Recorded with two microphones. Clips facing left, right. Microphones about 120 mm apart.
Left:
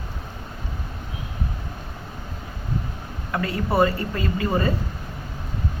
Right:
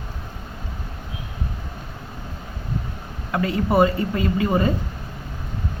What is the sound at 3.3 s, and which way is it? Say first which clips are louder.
A woman's voice: right 3 dB; 20° right (ahead or behind).